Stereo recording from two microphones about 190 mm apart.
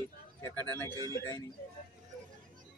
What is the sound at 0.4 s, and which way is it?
Speech, 10° left (ahead or behind).